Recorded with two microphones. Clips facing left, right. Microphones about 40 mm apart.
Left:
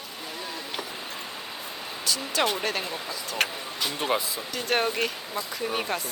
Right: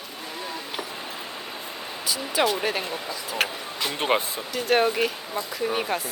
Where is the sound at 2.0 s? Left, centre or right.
Centre.